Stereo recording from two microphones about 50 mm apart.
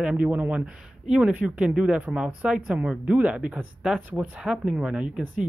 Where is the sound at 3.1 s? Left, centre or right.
Right.